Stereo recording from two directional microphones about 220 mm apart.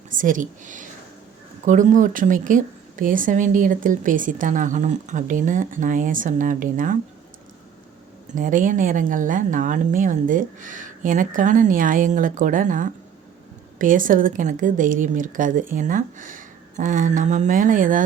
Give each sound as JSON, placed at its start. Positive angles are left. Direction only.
{"t": 0.1, "sound": "speech", "side_deg": -35}
{"t": 8.4, "sound": "speech", "side_deg": -35}